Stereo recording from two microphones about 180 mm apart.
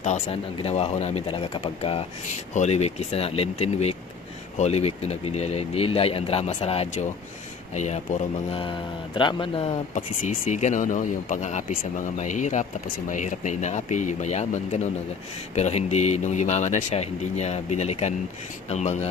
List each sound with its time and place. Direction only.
0.0 s speech: 35° left (ahead or behind)
9.9 s speech: 45° left (ahead or behind)